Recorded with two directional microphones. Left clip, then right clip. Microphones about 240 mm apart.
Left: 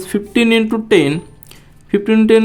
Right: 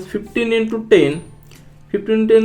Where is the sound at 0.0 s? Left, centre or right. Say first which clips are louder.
Left 5 dB; left.